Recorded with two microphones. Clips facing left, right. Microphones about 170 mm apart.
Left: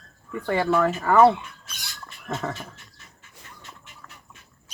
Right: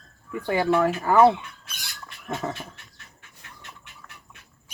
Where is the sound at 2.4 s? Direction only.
15° right (ahead or behind).